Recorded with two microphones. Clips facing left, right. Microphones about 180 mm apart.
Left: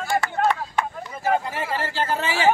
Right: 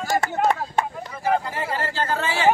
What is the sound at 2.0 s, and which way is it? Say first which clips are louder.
Speech: even; 10° left (ahead or behind).